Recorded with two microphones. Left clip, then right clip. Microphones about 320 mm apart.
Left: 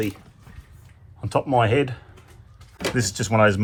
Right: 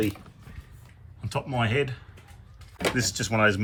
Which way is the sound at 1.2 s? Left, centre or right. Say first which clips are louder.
Left 9 dB; centre.